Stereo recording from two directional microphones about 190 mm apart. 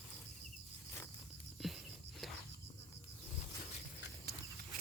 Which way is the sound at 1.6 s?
Centre (ahead or behind).